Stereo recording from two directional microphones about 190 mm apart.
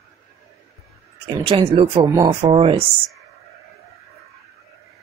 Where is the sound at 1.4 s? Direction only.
25° right (ahead or behind).